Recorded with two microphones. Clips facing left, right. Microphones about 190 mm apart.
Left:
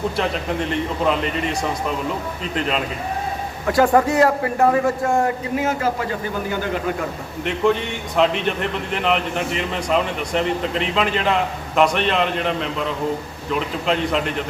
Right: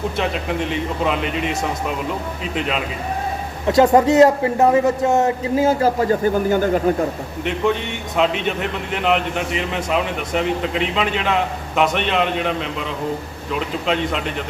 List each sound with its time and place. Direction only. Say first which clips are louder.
0.2 s a man's voice: even; 5° right (ahead or behind)
3.7 s a man's voice: right 3 dB; 20° right (ahead or behind); by 6.9 s 45° right (ahead or behind)
8.1 s a man's voice: even; centre (ahead or behind)